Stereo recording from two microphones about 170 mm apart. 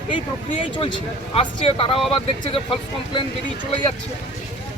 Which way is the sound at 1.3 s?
35° left (ahead or behind).